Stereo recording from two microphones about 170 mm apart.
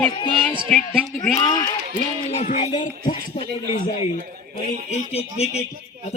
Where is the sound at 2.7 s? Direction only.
30° left (ahead or behind).